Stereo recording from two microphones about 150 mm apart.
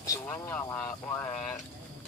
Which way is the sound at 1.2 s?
50° left (ahead or behind).